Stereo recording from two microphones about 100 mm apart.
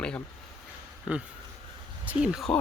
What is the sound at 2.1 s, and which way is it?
Speech, 10° right (ahead or behind).